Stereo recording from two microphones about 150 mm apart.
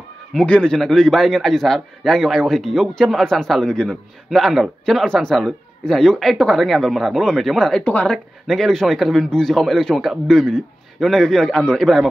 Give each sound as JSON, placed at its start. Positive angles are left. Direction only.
{"t": 0.3, "sound": "a man's voice", "side_deg": 5}